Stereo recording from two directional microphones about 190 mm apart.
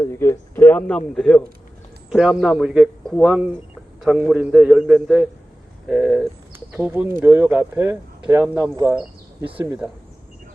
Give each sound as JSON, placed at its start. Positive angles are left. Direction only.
{"t": 0.0, "sound": "speech", "side_deg": 15}